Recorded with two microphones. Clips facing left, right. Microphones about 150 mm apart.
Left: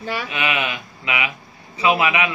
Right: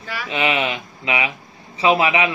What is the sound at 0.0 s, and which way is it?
Speech, 30° left (ahead or behind).